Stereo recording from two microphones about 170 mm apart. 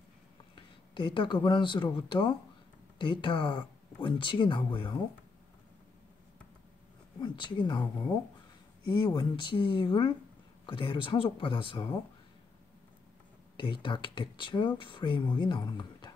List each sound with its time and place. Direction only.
0.6 s speech: 30° left (ahead or behind)
7.2 s speech: 25° left (ahead or behind)
13.6 s speech: 30° left (ahead or behind)